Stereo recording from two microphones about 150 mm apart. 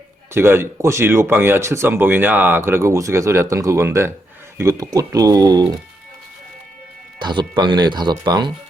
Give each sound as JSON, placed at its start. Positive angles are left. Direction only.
{"t": 0.3, "sound": "speech", "side_deg": -15}
{"t": 7.2, "sound": "speech", "side_deg": -30}